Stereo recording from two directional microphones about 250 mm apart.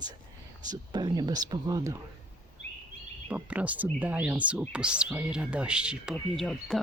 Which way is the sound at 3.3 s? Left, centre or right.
Centre.